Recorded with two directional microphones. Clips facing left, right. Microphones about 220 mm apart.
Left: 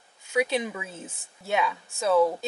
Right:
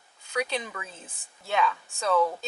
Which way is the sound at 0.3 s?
10° left (ahead or behind).